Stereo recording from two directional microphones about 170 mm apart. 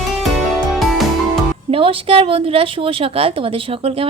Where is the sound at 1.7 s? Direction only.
30° right (ahead or behind).